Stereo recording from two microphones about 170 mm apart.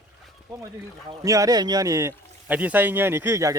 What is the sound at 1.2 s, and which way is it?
Speech, 20° right (ahead or behind).